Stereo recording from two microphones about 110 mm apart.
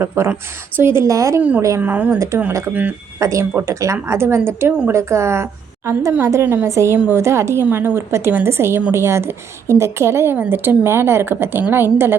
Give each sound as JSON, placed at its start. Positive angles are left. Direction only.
{"t": 0.2, "sound": "a woman's voice", "side_deg": -25}
{"t": 1.4, "sound": "a woman's voice", "side_deg": -15}
{"t": 2.1, "sound": "a woman's voice", "side_deg": -25}